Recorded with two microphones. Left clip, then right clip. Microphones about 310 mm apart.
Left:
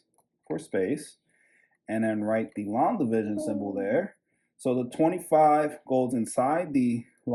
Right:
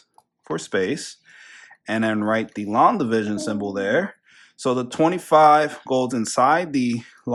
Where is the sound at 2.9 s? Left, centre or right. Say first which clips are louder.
Right 5 dB; centre.